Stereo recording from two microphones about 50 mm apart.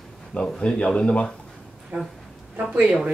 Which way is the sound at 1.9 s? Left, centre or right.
Right.